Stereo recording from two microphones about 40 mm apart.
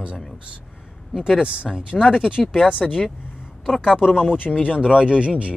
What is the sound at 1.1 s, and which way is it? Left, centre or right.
Speech, centre.